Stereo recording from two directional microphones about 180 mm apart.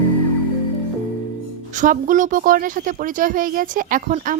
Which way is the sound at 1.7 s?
45° right (ahead or behind).